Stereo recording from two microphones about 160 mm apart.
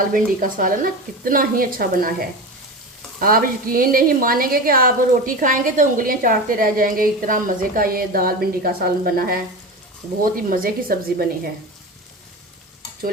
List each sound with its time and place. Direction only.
0.1 s a woman's voice: 60° right (ahead or behind)
3.2 s a woman's voice: 65° right (ahead or behind)